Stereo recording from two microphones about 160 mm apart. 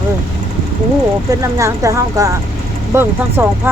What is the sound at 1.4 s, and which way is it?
Speech, 20° right (ahead or behind).